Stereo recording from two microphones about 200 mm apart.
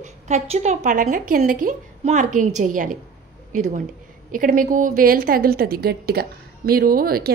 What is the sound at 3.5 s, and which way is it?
A woman's voice, 40° right (ahead or behind).